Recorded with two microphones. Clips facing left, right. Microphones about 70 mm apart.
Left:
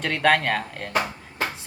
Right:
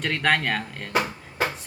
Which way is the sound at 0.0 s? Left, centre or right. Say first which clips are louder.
Left 3 dB; centre.